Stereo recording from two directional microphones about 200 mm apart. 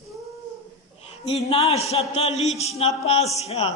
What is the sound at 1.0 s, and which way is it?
A man's voice, 30° left (ahead or behind).